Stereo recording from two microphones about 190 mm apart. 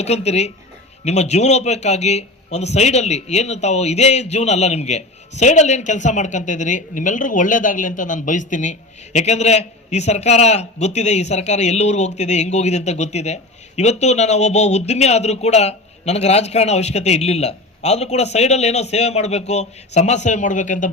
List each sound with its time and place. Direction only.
0.0 s speech: 35° left (ahead or behind)